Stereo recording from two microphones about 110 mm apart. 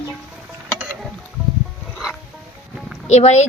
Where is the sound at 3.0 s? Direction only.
90° left.